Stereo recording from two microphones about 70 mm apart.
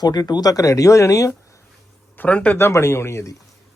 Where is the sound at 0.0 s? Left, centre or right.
Left.